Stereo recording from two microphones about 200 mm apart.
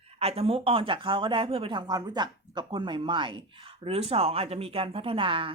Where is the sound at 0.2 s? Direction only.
30° right (ahead or behind).